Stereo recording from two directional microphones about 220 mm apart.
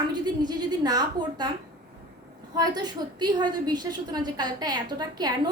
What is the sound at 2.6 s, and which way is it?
A woman's voice, 20° right (ahead or behind).